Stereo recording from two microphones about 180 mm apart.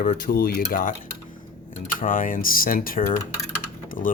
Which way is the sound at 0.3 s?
55° left (ahead or behind).